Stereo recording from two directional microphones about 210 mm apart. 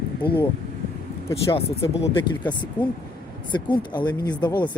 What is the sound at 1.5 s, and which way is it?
Speech, 30° left (ahead or behind).